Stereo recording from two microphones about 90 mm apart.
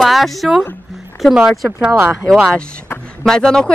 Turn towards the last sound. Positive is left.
turn(degrees=10)  # may be behind; listen again after turning